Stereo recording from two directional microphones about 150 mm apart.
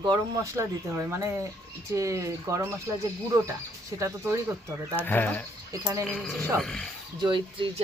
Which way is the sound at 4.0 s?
20° right (ahead or behind).